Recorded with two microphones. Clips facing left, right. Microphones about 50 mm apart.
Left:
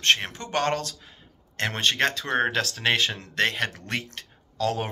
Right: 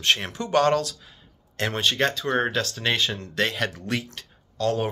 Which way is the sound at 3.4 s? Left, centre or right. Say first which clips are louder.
Even; left.